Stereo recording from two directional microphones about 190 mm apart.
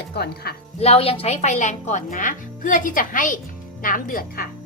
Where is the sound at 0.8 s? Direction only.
30° left (ahead or behind); by 4.4 s 50° left (ahead or behind).